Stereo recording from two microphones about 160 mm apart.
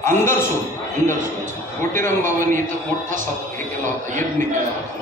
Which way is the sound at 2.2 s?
55° right (ahead or behind).